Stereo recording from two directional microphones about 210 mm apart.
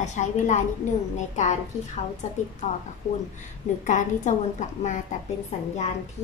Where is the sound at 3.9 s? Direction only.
35° left (ahead or behind).